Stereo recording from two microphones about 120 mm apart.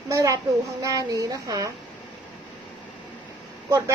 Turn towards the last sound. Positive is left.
turn(degrees=-25)  # may be behind; listen again after turning